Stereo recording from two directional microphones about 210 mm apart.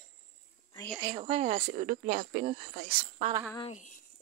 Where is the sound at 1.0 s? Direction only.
30° right (ahead or behind).